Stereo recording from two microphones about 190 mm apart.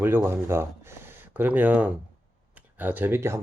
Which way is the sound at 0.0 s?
10° right (ahead or behind).